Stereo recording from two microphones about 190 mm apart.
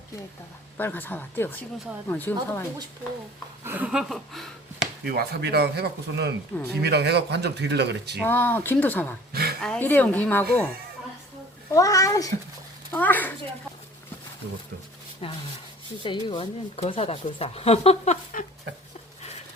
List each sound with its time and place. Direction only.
0.8 s speech: 10° left (ahead or behind)
3.6 s speech: 10° right (ahead or behind)
5.0 s speech: 55° right (ahead or behind)
8.2 s speech: 10° left (ahead or behind)
9.3 s a sound: 55° right (ahead or behind)
9.6 s speech: 5° left (ahead or behind)
11.7 s speech: 20° left (ahead or behind)
15.2 s speech: 30° left (ahead or behind)